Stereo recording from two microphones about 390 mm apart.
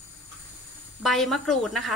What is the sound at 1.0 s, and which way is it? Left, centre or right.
Speech, centre.